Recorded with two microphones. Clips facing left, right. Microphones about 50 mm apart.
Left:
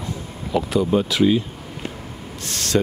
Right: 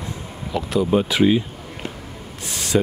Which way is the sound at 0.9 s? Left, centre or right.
Right.